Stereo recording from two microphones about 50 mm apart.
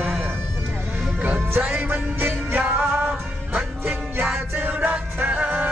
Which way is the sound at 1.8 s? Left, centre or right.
Right.